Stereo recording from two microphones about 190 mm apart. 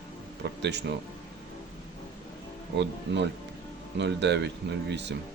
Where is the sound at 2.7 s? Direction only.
65° right (ahead or behind).